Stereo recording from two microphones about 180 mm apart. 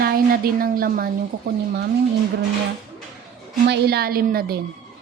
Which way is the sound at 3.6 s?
65° right (ahead or behind).